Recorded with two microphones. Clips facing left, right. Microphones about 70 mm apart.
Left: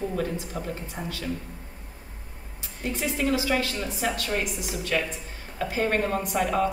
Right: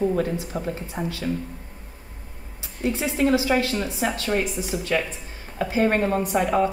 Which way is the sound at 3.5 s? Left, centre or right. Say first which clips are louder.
Right 4 dB; right.